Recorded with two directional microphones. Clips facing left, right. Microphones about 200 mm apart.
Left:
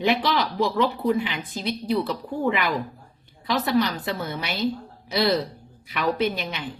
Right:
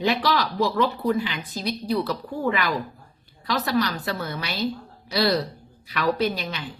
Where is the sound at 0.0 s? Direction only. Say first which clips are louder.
Even; 20° left (ahead or behind).